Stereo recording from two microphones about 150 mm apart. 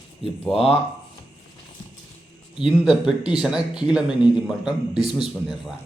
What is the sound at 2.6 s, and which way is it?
Speech, 5° right (ahead or behind).